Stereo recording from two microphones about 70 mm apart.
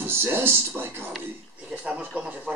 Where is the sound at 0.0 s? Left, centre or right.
Right.